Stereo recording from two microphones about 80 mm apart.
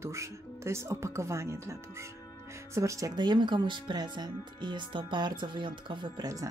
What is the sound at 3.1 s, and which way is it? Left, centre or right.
Speech, right.